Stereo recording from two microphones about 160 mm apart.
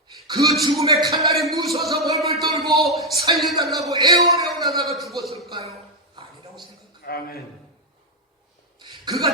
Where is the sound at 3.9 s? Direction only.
20° right (ahead or behind).